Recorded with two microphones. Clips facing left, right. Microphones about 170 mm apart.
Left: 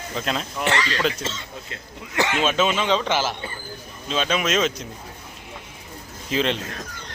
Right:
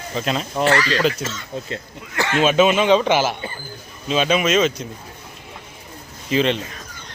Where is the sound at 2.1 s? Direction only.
20° left (ahead or behind).